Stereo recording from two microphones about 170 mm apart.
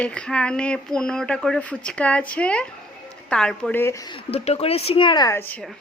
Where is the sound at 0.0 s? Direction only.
5° left (ahead or behind).